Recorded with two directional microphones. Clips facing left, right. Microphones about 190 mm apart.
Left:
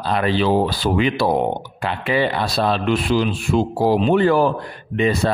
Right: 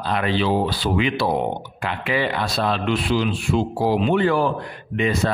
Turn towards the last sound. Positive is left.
turn(degrees=35)  # may be behind; listen again after turning